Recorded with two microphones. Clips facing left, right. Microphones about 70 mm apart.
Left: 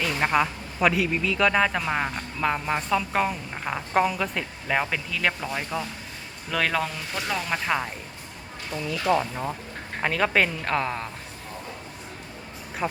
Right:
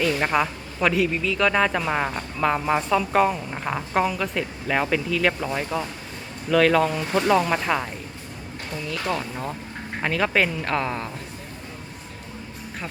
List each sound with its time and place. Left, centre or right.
0.0 s a woman's voice: centre
5.7 s speech: centre
6.5 s a woman's voice: centre
7.2 s speech: centre
8.7 s a woman's voice: centre
12.8 s speech: centre